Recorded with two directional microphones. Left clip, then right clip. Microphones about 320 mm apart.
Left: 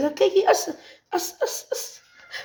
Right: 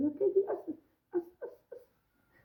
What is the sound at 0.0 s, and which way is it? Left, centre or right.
Speech, left.